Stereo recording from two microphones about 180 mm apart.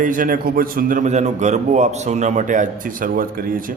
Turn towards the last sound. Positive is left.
turn(degrees=-50)  # may be behind; listen again after turning